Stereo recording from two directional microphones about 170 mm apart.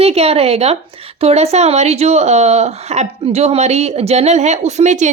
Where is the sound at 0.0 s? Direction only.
35° right (ahead or behind).